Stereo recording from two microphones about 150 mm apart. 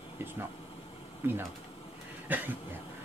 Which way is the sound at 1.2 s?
15° right (ahead or behind).